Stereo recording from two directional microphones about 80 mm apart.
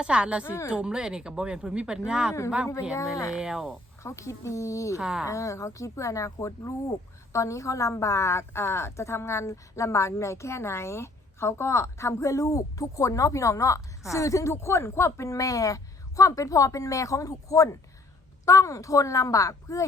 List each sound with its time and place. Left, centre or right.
0.0 s speech: centre
0.4 s a woman's voice: left
0.7 s speech: centre
2.9 s a woman's voice: left
3.3 s speech: centre
4.0 s a woman's voice: left
4.9 s speech: centre
5.2 s a woman's voice: left